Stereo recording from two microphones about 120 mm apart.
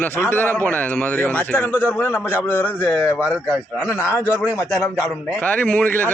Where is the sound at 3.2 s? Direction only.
10° right (ahead or behind).